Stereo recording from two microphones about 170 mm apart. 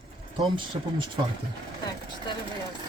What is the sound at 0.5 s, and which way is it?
Speech, 30° right (ahead or behind).